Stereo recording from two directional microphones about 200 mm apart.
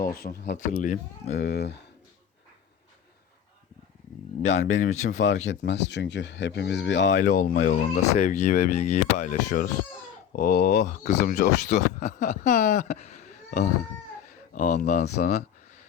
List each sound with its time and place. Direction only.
0.2 s speech: 50° left (ahead or behind)
0.5 s speech: 40° left (ahead or behind)
1.5 s speech: 55° left (ahead or behind)
4.4 s speech: 35° left (ahead or behind)
5.1 s speech: 75° left (ahead or behind)
5.5 s speech: 60° left (ahead or behind)
7.1 s speech: 40° left (ahead or behind)